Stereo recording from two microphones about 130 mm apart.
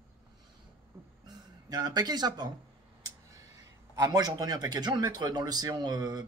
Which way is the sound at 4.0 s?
30° right (ahead or behind).